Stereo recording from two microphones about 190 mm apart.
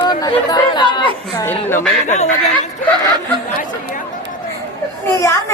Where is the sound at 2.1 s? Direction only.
40° left (ahead or behind).